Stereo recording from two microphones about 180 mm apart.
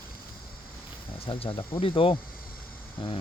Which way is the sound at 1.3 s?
30° left (ahead or behind).